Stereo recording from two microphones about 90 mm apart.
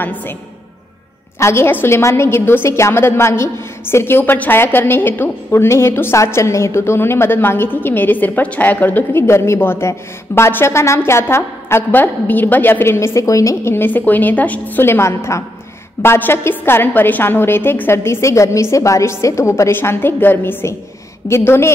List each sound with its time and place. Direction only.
0.0 s a woman's voice: 20° left (ahead or behind)
1.4 s a woman's voice: 30° left (ahead or behind)
13.7 s a woman's voice: 20° left (ahead or behind)